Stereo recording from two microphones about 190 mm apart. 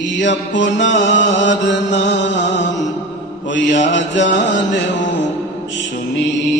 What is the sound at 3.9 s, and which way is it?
Mantra, 70° left (ahead or behind).